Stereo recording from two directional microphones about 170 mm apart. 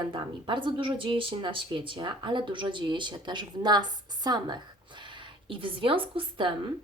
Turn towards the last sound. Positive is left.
turn(degrees=-30)  # may be behind; listen again after turning